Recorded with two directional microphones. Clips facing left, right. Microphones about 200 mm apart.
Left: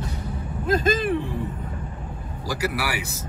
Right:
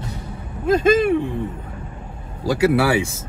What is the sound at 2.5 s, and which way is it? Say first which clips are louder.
Speech: right 10 dB; 25° right (ahead or behind).